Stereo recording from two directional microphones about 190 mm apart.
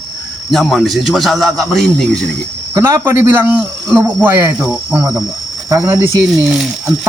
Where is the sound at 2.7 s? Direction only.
15° right (ahead or behind).